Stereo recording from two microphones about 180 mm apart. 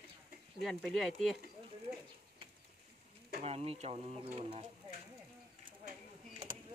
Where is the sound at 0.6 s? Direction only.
Centre (ahead or behind).